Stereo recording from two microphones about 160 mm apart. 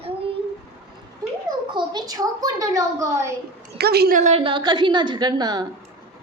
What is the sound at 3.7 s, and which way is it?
Speech, 90° right.